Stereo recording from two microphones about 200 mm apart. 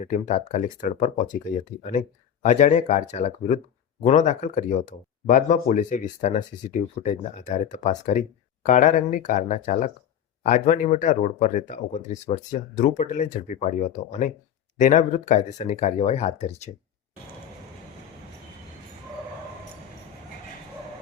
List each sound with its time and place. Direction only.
0.0 s speech: 35° left (ahead or behind)